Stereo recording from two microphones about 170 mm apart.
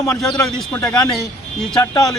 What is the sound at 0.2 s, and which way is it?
Speech, centre (ahead or behind).